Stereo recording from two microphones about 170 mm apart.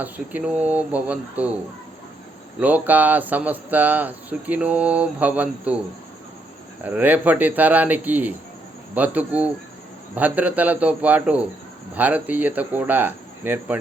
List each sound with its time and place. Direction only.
0.0 s speech: 10° right (ahead or behind)
2.6 s speech: 10° right (ahead or behind)
6.8 s speech: 10° right (ahead or behind)